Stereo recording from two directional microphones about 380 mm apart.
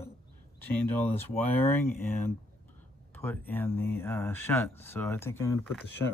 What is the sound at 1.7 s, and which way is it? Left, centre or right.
Speech, centre.